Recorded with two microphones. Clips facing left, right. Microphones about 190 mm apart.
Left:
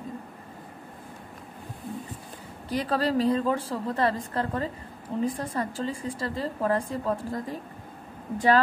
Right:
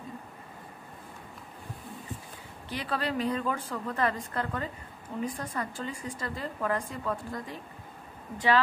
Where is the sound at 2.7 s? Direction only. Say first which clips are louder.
Left 6 dB; 40° left (ahead or behind).